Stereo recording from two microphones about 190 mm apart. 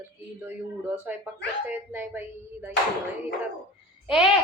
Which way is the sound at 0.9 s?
10° right (ahead or behind).